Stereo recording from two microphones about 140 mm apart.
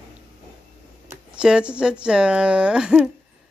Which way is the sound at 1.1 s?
10° right (ahead or behind).